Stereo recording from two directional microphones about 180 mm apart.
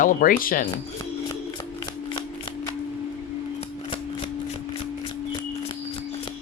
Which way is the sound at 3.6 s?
35° left (ahead or behind).